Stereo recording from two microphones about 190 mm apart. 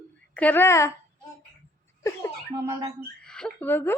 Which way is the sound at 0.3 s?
10° left (ahead or behind).